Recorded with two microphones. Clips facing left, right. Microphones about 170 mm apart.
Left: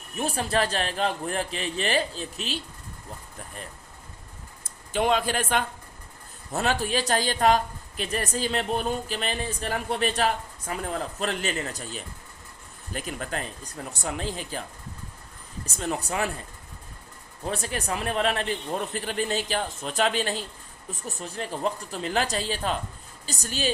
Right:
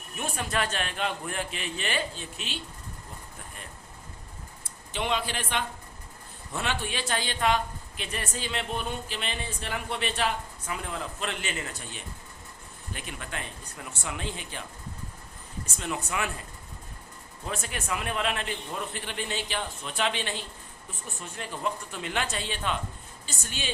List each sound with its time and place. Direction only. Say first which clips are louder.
0.2 s a woman's voice: left 5 dB; 35° left (ahead or behind)
4.6 s a woman's voice: left 8 dB; 45° left (ahead or behind)
15.6 s a woman's voice: left 4 dB; 35° left (ahead or behind)
17.4 s a woman's voice: left 5 dB; 35° left (ahead or behind)